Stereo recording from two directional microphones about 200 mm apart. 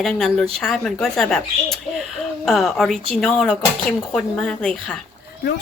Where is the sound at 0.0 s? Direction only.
Centre (ahead or behind).